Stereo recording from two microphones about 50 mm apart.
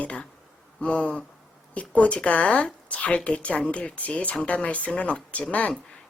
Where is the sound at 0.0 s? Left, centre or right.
Left.